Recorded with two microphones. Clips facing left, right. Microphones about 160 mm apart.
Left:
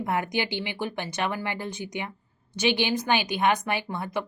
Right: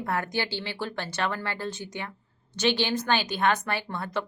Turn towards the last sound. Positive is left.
turn(degrees=15)  # may be behind; listen again after turning